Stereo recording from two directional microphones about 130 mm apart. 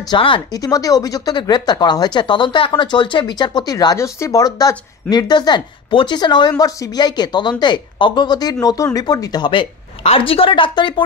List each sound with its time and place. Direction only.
0.1 s speech: 35° left (ahead or behind)